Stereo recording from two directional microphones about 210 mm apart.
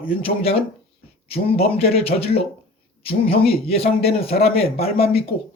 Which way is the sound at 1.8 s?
30° left (ahead or behind).